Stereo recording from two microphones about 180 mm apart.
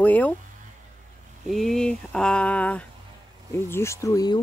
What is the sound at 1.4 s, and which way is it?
Speech, centre (ahead or behind).